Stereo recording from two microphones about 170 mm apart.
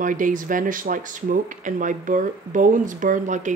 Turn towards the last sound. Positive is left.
turn(degrees=-50)  # may be behind; listen again after turning